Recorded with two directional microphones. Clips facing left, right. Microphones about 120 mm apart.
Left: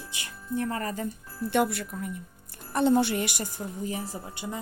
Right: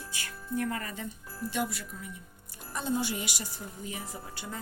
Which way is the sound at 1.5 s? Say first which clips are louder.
Left 8 dB; 60° left (ahead or behind).